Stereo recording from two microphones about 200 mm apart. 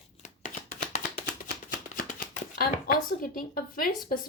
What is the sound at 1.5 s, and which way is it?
Shuffling cards, 45° left (ahead or behind).